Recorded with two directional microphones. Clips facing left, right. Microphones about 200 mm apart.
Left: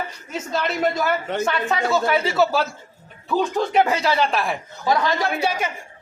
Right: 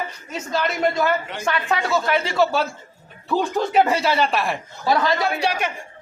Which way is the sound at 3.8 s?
Centre (ahead or behind).